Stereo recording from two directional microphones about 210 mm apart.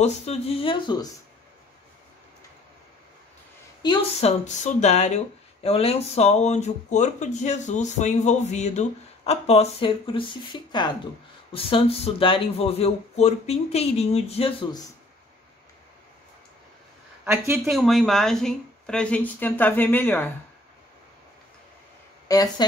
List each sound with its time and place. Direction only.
0.0 s speech: 30° left (ahead or behind)
3.8 s speech: 25° left (ahead or behind)
17.2 s speech: 10° right (ahead or behind); by 20.3 s 10° left (ahead or behind)
22.3 s speech: 15° left (ahead or behind)